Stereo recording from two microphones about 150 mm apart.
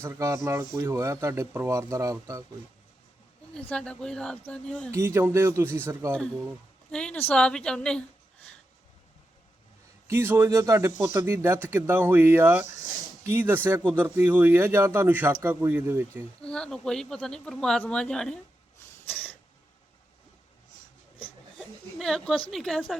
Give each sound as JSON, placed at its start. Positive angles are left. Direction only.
{"t": 0.0, "sound": "speech", "side_deg": -20}
{"t": 3.5, "sound": "speech", "side_deg": 10}
{"t": 4.9, "sound": "speech", "side_deg": -15}
{"t": 6.9, "sound": "a woman's voice", "side_deg": 5}
{"t": 10.1, "sound": "speech", "side_deg": -15}
{"t": 16.4, "sound": "speech", "side_deg": 5}
{"t": 21.6, "sound": "a sound", "side_deg": 0}
{"t": 22.5, "sound": "speech", "side_deg": 0}